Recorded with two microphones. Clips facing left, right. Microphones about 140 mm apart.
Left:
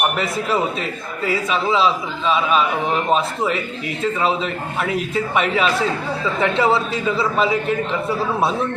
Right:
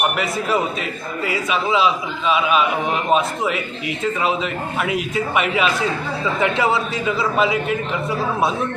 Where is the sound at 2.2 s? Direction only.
5° right (ahead or behind).